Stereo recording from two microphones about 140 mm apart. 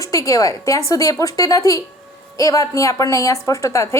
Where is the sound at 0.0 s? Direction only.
25° left (ahead or behind).